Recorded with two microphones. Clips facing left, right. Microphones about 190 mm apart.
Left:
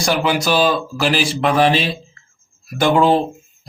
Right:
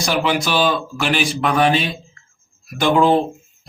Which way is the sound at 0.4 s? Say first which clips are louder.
Left 2 dB; 35° left (ahead or behind).